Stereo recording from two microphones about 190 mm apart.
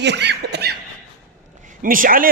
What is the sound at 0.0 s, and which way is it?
Snicker, 65° right (ahead or behind).